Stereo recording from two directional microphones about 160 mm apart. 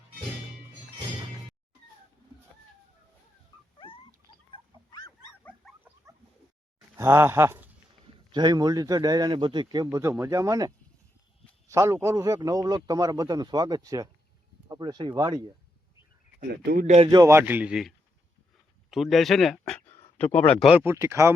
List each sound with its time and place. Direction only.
3.8 s dog: 35° left (ahead or behind)
4.5 s a sound: 25° left (ahead or behind)
6.9 s speech: 15° right (ahead or behind)
8.3 s a man's voice: 25° right (ahead or behind)
11.7 s a man's voice: 20° right (ahead or behind)
16.4 s a man's voice: 65° right (ahead or behind)
16.8 s speech: 45° right (ahead or behind)
17.1 s a man's voice: 20° right (ahead or behind); by 19.8 s centre (ahead or behind)
19.9 s a sound: 10° left (ahead or behind)
20.7 s a man's voice: 10° right (ahead or behind)